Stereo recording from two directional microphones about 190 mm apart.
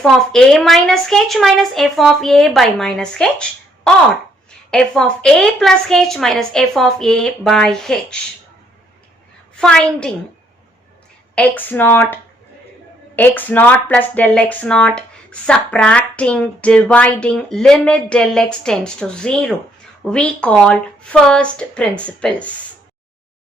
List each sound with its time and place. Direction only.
0.0 s speech: centre (ahead or behind)
9.6 s speech: 5° left (ahead or behind)
11.3 s speech: 10° left (ahead or behind)